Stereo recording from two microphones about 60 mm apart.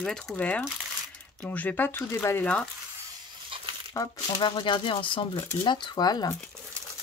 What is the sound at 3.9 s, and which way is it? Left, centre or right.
Speech, left.